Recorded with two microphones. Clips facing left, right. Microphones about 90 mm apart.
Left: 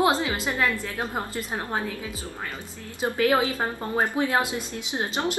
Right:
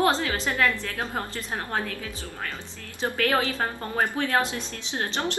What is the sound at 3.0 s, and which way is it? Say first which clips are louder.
A woman's voice: left 3 dB; 10° left (ahead or behind).